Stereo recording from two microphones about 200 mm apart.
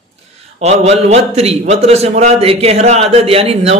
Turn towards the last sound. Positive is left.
turn(degrees=-30)  # may be behind; listen again after turning